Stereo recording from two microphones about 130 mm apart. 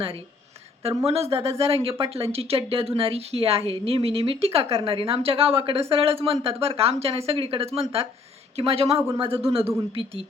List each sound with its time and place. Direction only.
0.8 s speech: 50° right (ahead or behind)